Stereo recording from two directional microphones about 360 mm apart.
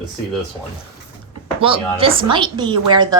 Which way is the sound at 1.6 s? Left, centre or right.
Centre.